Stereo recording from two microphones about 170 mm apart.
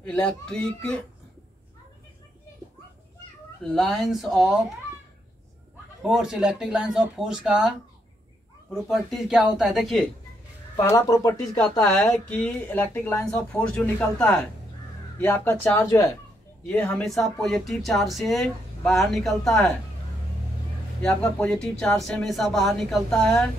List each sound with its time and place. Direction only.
0.0 s speech: 5° left (ahead or behind)
3.6 s speech: centre (ahead or behind)
6.0 s speech: 5° right (ahead or behind)
8.8 s speech: centre (ahead or behind)
10.8 s speech: 20° left (ahead or behind)
11.5 s speech: 5° left (ahead or behind)
21.0 s speech: 5° left (ahead or behind)